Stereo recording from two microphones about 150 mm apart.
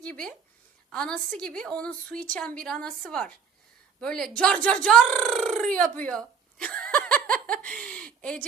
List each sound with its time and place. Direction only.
0.0 s a woman's voice: 5° left (ahead or behind)
6.0 s a sound: 5° left (ahead or behind)
7.6 s speech: 10° left (ahead or behind)